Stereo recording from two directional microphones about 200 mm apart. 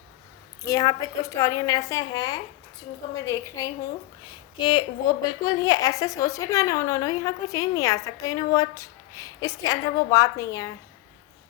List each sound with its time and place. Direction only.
0.6 s a woman's voice: 15° left (ahead or behind)